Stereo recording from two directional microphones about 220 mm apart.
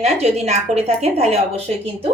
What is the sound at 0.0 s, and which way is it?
A woman's voice, 30° right (ahead or behind).